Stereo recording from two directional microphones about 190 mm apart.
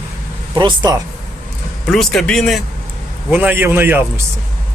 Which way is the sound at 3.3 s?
10° right (ahead or behind).